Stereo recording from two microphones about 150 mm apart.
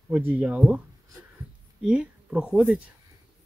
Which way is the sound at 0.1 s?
10° right (ahead or behind).